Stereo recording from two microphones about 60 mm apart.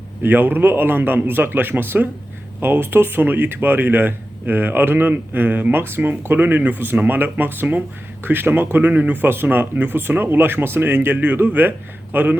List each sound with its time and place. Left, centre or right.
0.2 s speech: right